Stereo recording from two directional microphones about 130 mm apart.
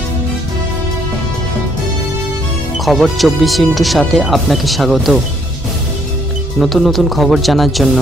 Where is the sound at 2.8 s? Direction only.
Centre (ahead or behind).